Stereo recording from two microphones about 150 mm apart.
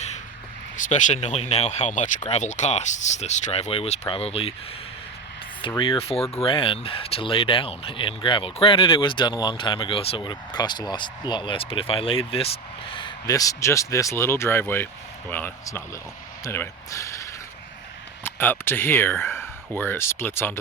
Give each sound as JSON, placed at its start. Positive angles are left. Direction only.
{"t": 0.8, "sound": "speech", "side_deg": 55}
{"t": 5.6, "sound": "speech", "side_deg": 35}
{"t": 13.2, "sound": "speech", "side_deg": 25}